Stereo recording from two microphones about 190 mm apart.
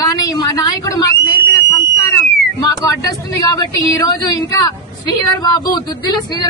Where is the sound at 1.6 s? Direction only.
20° left (ahead or behind).